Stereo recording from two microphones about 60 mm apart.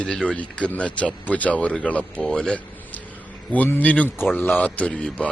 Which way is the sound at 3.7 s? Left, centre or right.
Left.